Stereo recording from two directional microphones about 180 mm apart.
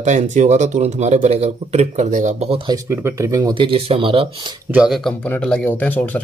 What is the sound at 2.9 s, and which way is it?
Speech, 15° right (ahead or behind).